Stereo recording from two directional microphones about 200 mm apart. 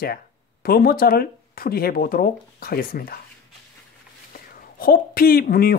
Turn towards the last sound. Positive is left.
turn(degrees=50)  # may be behind; listen again after turning